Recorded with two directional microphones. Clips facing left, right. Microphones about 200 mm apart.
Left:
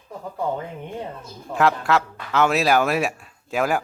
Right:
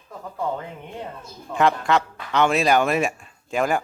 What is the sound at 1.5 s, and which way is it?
Speech, centre (ahead or behind).